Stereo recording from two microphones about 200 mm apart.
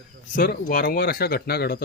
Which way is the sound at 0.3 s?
45° left (ahead or behind).